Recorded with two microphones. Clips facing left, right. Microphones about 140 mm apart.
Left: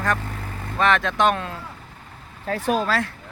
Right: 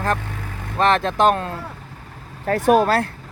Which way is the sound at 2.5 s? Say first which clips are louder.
Right 7 dB; 50° right (ahead or behind).